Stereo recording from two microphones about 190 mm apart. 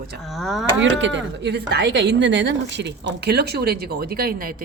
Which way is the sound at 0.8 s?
75° right (ahead or behind).